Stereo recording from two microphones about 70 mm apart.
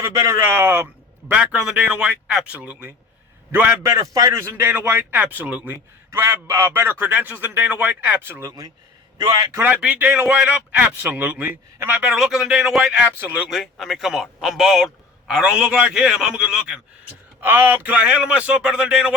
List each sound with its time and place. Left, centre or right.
0.0 s speech: right
0.4 s speech: right
1.3 s a man's voice: centre
3.8 s a man's voice: right
4.4 s a man's voice: right
6.1 s a man's voice: right
8.2 s speech: right
9.6 s a man's voice: right
12.2 s a man's voice: centre
17.4 s speech: right